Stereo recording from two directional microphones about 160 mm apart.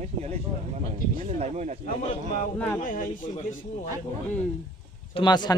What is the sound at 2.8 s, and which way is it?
Speech, 55° left (ahead or behind).